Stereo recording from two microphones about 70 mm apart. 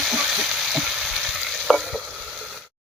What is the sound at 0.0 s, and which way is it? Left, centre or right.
Stir, centre.